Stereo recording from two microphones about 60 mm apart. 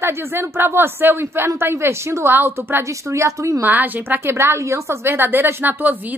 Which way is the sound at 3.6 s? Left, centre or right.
Right.